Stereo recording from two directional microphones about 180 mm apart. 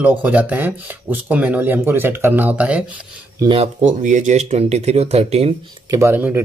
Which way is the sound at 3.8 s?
45° right (ahead or behind).